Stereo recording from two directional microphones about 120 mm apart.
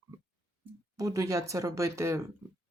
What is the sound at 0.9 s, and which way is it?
Speech, 30° right (ahead or behind).